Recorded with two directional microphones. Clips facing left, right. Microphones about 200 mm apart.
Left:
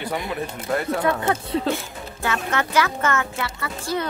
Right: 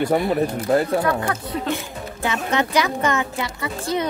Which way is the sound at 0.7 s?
30° right (ahead or behind).